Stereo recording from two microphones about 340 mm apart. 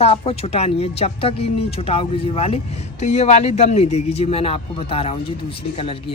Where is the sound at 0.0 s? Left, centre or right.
Centre.